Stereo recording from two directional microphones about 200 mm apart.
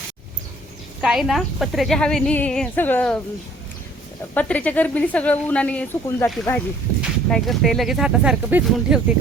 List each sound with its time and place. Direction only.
1.0 s speech: centre (ahead or behind)
4.4 s speech: 5° left (ahead or behind)